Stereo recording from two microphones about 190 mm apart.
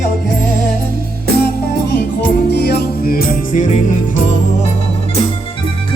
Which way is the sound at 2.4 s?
60° left (ahead or behind).